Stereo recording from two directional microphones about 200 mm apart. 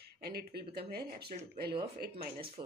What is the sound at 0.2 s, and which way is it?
Speech, 50° right (ahead or behind).